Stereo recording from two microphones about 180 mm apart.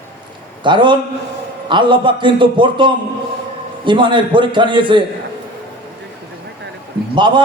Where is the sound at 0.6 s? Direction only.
25° right (ahead or behind).